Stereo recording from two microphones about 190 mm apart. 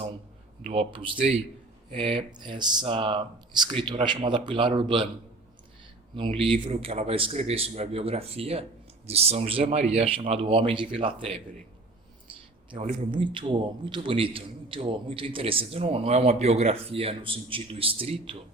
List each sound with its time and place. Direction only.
0.6 s a man's voice: 30° right (ahead or behind)
6.1 s speech: 25° right (ahead or behind)
12.7 s a man's voice: 30° right (ahead or behind)